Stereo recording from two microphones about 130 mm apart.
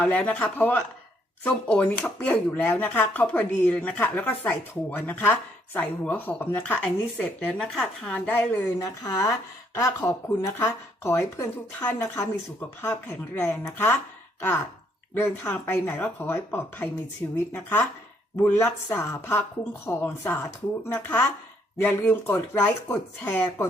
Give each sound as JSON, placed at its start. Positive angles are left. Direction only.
{"t": 0.0, "sound": "speech", "side_deg": 10}
{"t": 8.8, "sound": "speech", "side_deg": 25}
{"t": 15.1, "sound": "speech", "side_deg": 15}